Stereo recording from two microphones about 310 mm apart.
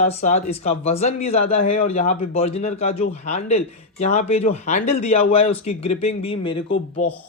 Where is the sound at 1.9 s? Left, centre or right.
Left.